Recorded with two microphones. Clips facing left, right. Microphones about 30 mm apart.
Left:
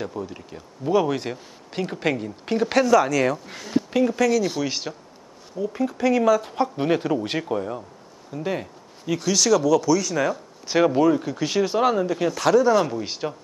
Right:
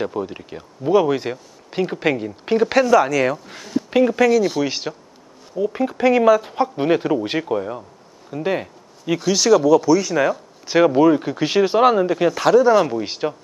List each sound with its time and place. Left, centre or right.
0.0 s speech: right
0.8 s speech: centre
3.9 s speech: centre
8.3 s a sound: right
9.2 s speech: centre